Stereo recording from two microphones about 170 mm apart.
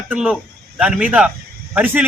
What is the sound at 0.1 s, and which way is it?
A man's voice, 5° right (ahead or behind).